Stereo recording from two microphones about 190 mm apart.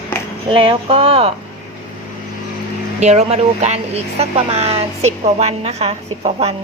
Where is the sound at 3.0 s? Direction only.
35° right (ahead or behind).